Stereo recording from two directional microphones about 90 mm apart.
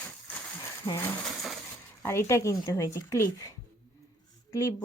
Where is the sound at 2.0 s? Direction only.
30° left (ahead or behind).